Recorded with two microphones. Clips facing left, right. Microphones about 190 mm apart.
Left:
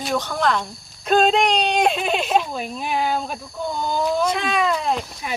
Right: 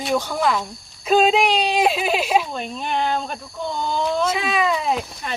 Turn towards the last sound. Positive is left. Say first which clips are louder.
# even
turn(degrees=0)  # may be behind; listen again after turning